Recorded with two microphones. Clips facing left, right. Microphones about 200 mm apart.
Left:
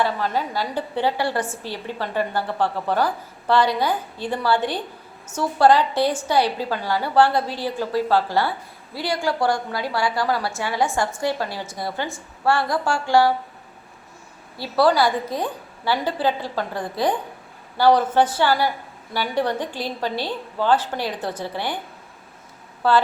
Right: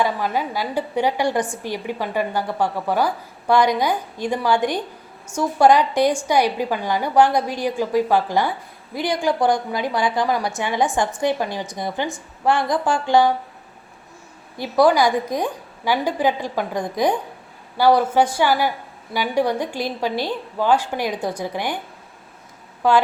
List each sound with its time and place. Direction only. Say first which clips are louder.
0.0 s a woman's voice: right 1 dB; 10° right (ahead or behind)
14.6 s a woman's voice: right 2 dB; 15° right (ahead or behind)
22.8 s a woman's voice: right 2 dB; 15° right (ahead or behind)